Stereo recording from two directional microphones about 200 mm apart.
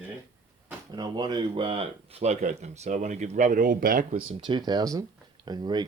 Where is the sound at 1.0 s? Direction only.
20° right (ahead or behind); by 4.2 s 45° right (ahead or behind).